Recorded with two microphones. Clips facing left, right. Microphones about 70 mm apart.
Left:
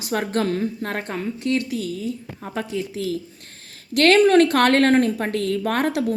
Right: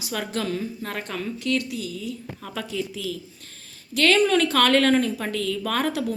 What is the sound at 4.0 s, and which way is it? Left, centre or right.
A woman's voice, left.